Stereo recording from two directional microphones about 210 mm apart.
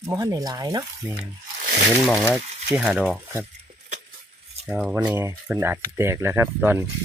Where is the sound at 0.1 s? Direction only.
15° right (ahead or behind).